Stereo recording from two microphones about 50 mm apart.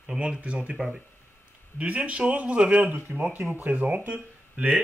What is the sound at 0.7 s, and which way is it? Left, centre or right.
Speech, centre.